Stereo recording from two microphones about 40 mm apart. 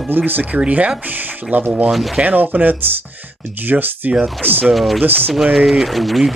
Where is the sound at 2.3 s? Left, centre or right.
Right.